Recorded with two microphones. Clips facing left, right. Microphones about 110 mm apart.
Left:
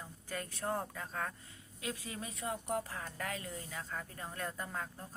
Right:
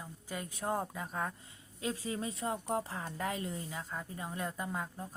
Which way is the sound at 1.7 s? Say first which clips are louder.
Right 6 dB; 25° right (ahead or behind).